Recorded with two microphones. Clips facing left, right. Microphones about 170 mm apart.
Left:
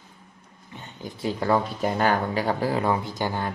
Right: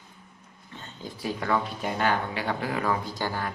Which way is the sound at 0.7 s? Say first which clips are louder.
Left 2 dB; 15° left (ahead or behind).